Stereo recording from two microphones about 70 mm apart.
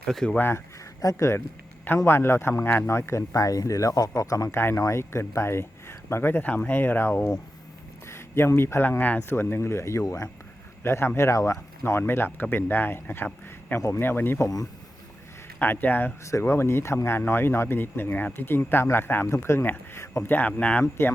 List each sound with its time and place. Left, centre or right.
0.0 s speech: centre
0.3 s speech: left
1.0 s speech: left
4.5 s speech: left
8.0 s speech: left
9.3 s speech: left
11.8 s speech: left
14.4 s speech: left
15.6 s speech: left
16.2 s speech: left
20.3 s speech: left